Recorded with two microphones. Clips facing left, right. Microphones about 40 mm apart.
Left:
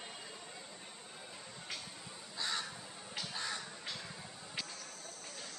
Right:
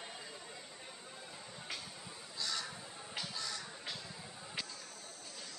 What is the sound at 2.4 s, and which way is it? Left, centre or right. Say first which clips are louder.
Honk: left 2 dB; left.